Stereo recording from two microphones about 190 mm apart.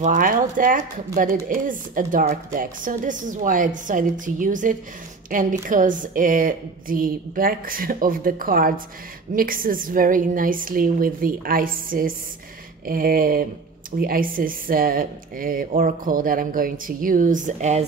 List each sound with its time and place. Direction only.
0.0 s speech: 45° right (ahead or behind)